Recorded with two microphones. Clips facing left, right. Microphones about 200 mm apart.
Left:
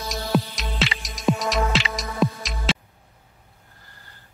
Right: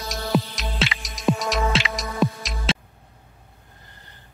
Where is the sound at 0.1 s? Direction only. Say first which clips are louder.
Even; centre (ahead or behind).